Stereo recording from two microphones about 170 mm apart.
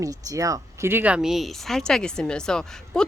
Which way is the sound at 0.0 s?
20° right (ahead or behind).